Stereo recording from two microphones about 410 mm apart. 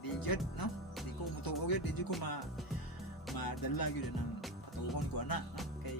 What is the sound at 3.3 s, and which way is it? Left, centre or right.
Music, left.